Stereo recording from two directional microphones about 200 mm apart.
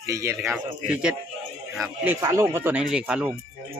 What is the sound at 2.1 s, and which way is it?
Speech, 15° right (ahead or behind).